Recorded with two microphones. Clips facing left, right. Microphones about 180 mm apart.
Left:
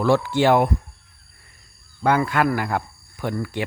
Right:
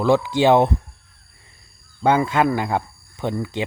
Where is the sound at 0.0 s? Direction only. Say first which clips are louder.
Right 1 dB; 15° right (ahead or behind).